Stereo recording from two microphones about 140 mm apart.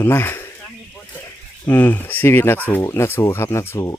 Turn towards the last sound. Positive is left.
turn(degrees=20)  # may be behind; listen again after turning